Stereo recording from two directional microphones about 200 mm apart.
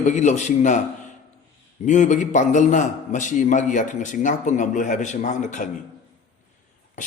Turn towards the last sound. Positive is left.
turn(degrees=35)  # may be behind; listen again after turning